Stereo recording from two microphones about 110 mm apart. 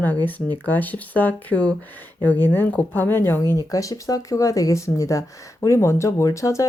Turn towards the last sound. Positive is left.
turn(degrees=30)  # may be behind; listen again after turning